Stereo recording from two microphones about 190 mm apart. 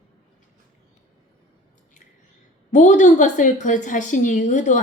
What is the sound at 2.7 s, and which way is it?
A woman's voice, 40° left (ahead or behind).